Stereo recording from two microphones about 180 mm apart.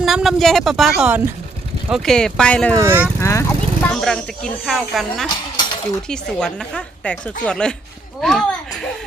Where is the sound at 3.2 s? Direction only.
15° left (ahead or behind).